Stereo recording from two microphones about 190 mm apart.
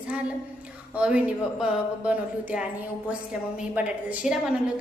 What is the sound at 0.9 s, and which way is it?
A woman's voice, 5° right (ahead or behind).